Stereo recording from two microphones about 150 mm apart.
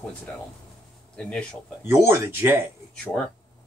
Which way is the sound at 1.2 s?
5° left (ahead or behind).